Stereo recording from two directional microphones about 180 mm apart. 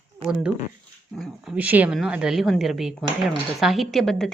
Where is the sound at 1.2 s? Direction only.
5° right (ahead or behind).